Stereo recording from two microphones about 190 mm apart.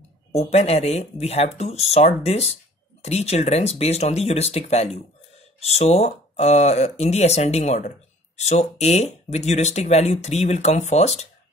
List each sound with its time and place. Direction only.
0.3 s speech: 35° left (ahead or behind)